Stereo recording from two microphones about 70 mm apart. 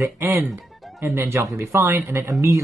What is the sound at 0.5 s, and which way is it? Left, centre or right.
Music, centre.